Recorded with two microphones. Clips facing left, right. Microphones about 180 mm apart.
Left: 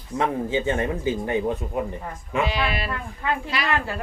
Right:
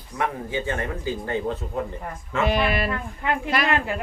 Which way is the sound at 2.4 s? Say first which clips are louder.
Right 4 dB; 50° right (ahead or behind).